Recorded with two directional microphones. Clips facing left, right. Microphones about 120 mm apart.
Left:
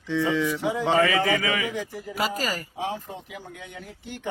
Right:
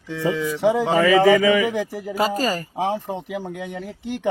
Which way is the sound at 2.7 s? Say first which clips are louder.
Right 7 dB; 90° right.